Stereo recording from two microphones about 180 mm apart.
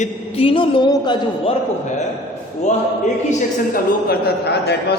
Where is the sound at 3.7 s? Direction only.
60° left (ahead or behind).